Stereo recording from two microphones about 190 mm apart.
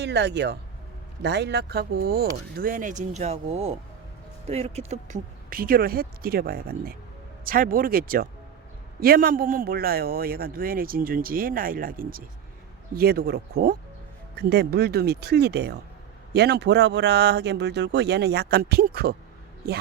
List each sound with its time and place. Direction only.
0.0 s a man's voice: 60° right (ahead or behind)